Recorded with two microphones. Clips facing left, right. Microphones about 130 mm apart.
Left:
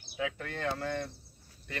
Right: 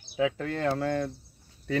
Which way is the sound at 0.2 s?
30° right (ahead or behind).